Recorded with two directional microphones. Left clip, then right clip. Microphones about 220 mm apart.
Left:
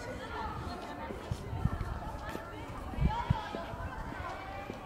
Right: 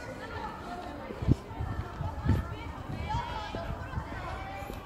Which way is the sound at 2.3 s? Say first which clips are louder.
Right 8 dB; 50° left (ahead or behind).